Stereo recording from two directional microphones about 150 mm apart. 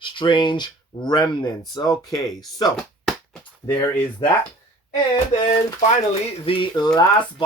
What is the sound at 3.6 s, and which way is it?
Speech, 15° left (ahead or behind).